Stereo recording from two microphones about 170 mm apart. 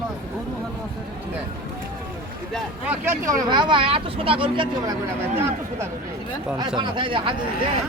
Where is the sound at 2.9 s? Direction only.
15° right (ahead or behind).